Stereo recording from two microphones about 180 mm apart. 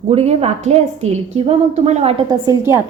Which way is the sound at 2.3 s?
15° right (ahead or behind).